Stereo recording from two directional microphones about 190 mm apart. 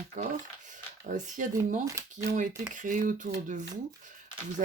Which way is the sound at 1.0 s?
40° right (ahead or behind).